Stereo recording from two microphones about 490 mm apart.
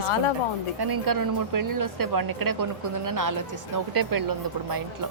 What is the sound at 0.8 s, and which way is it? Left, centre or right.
Speech, right.